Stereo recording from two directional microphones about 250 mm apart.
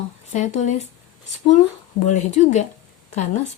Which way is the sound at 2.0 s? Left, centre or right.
Left.